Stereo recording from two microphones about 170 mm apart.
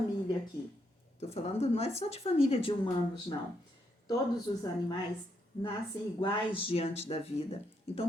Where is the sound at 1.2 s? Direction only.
35° left (ahead or behind).